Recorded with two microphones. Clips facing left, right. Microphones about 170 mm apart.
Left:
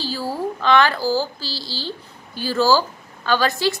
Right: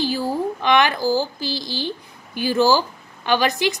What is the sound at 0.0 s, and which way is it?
A woman's voice, 15° right (ahead or behind).